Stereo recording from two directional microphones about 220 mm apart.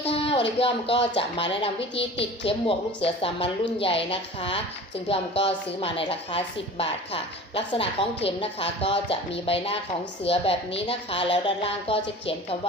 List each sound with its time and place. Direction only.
0.0 s a woman's voice: 25° left (ahead or behind)